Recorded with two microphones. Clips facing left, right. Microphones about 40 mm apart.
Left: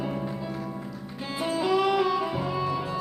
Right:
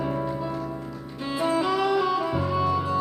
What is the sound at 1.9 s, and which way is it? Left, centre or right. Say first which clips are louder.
Music: right 1 dB; centre.